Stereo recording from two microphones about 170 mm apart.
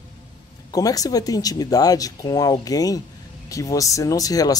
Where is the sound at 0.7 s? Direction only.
20° left (ahead or behind).